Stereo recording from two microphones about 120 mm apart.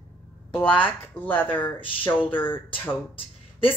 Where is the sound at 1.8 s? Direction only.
45° left (ahead or behind).